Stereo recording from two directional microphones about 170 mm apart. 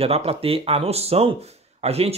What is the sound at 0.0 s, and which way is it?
Speech, 35° right (ahead or behind).